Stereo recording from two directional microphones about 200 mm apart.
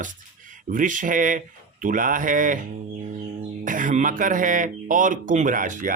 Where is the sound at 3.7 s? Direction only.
40° right (ahead or behind).